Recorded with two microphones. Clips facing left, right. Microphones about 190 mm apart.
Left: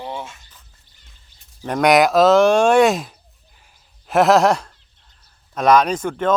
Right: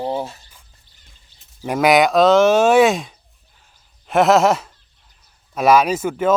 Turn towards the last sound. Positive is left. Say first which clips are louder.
# right 2 dB
turn(degrees=-5)  # may be behind; listen again after turning